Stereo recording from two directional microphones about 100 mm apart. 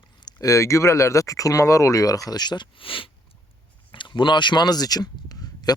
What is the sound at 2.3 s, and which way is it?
Speech, 45° left (ahead or behind).